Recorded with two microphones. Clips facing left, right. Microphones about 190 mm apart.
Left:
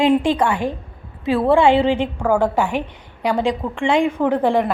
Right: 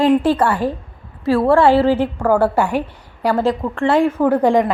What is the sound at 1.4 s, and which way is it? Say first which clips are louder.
A woman's voice: right 1 dB; centre (ahead or behind).